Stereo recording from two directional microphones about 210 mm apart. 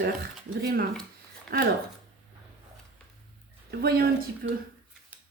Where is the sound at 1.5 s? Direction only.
45° right (ahead or behind).